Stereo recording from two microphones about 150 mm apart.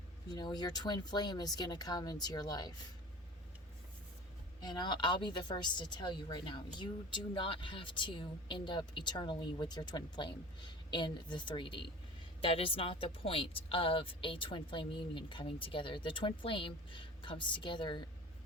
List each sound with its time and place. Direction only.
0.3 s speech: 25° left (ahead or behind)
4.6 s a woman's voice: 30° left (ahead or behind)